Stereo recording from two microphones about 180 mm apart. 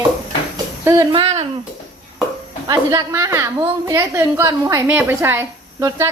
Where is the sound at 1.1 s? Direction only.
30° right (ahead or behind).